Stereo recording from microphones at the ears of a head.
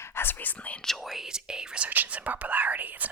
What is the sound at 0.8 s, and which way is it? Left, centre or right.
Speech, centre.